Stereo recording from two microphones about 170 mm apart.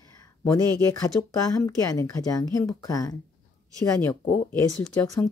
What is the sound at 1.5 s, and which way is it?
A woman's voice, 20° left (ahead or behind).